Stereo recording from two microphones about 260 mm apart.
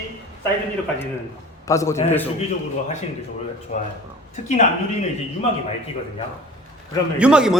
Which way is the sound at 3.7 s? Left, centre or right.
Left.